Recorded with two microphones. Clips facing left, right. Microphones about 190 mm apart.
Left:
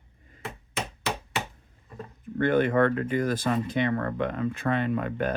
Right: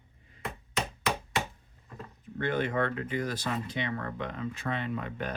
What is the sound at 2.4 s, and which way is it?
Speech, 55° left (ahead or behind).